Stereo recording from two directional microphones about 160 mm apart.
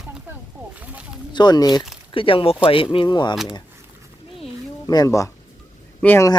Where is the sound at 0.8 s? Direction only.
5° right (ahead or behind).